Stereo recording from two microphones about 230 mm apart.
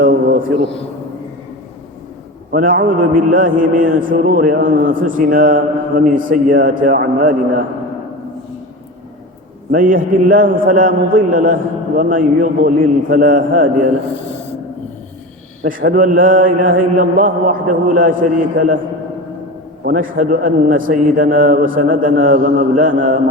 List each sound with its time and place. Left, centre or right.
0.0 s a man's voice: right
2.5 s a man's voice: right
9.7 s a man's voice: right
15.9 s a man's voice: right
19.8 s a man's voice: right